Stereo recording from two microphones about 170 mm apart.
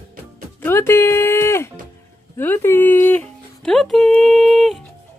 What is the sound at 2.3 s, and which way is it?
Music, 15° left (ahead or behind).